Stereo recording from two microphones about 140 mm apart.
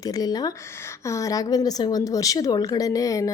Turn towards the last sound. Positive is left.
turn(degrees=25)  # may be behind; listen again after turning